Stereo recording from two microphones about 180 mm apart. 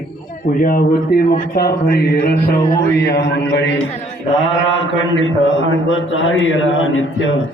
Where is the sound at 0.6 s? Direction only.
55° left (ahead or behind); by 3.7 s 75° left (ahead or behind).